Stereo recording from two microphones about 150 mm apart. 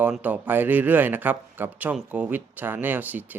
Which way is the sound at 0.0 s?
10° right (ahead or behind).